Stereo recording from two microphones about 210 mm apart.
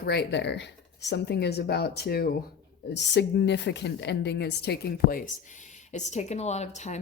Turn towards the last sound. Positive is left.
turn(degrees=35)  # may be behind; listen again after turning